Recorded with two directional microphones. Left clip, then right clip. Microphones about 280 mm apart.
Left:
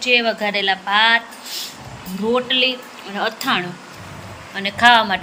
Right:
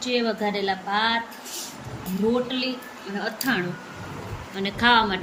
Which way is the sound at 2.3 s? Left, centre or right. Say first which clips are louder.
Left 9 dB; centre.